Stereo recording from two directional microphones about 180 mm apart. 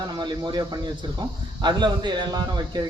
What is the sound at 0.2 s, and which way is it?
Speech, 25° right (ahead or behind).